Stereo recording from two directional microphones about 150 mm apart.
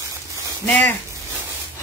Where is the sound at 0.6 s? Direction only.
10° left (ahead or behind).